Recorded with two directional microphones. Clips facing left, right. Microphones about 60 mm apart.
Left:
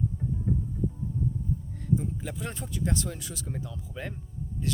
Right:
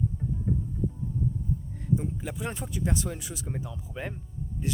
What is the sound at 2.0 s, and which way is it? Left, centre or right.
A man's voice, centre.